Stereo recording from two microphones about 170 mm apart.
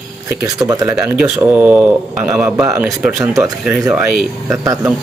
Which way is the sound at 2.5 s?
20° right (ahead or behind).